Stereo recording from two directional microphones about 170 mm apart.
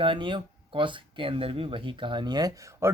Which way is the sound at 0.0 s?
30° right (ahead or behind).